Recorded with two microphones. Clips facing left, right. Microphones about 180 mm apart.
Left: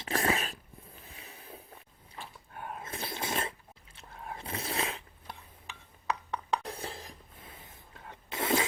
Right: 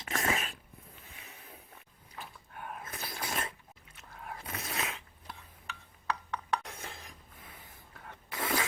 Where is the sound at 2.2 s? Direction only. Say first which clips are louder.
Left 2 dB; 25° left (ahead or behind).